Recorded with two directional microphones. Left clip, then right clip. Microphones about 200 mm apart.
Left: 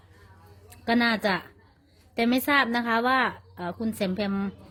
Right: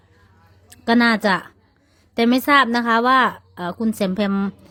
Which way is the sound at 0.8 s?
30° right (ahead or behind).